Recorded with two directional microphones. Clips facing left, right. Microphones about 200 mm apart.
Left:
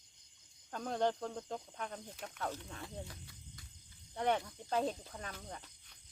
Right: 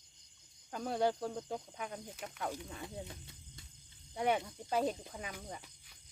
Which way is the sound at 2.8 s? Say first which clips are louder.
Right 2 dB; 25° right (ahead or behind).